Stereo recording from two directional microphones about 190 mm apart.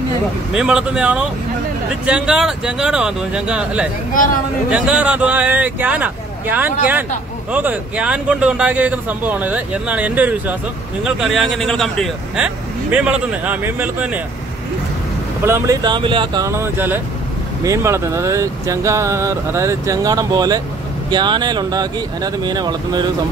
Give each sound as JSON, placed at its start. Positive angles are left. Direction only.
{"t": 0.5, "sound": "speech", "side_deg": -5}
{"t": 4.1, "sound": "a man's voice", "side_deg": 45}
{"t": 4.6, "sound": "speech", "side_deg": -5}
{"t": 15.4, "sound": "speech", "side_deg": -15}